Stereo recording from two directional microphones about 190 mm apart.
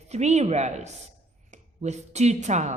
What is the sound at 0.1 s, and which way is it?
A woman's voice, 35° right (ahead or behind).